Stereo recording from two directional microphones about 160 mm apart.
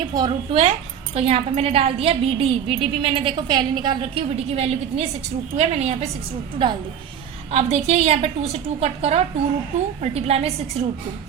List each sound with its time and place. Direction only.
0.1 s a woman's voice: 25° right (ahead or behind)
1.1 s a woman's voice: 40° right (ahead or behind)
7.5 s a woman's voice: 40° right (ahead or behind)